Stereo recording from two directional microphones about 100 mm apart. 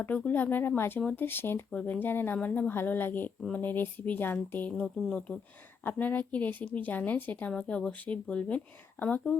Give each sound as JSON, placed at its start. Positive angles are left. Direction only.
{"t": 0.0, "sound": "a woman's voice", "side_deg": 15}
{"t": 4.7, "sound": "speech", "side_deg": 5}
{"t": 5.8, "sound": "speech", "side_deg": 15}